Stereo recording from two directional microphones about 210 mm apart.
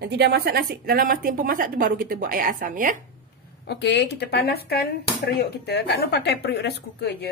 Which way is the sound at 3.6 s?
55° left (ahead or behind).